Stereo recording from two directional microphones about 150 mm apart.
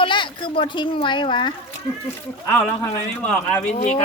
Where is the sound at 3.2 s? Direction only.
5° left (ahead or behind).